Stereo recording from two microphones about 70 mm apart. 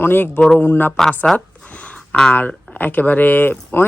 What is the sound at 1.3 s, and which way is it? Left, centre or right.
Speech, centre.